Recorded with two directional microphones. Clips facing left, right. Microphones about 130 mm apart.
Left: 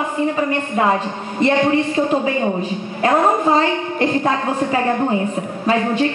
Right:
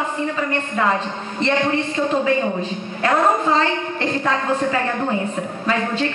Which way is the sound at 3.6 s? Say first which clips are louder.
Left 3 dB; 20° left (ahead or behind).